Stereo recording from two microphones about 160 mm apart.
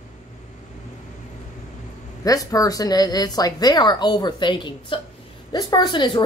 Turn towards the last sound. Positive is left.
turn(degrees=30)  # may be behind; listen again after turning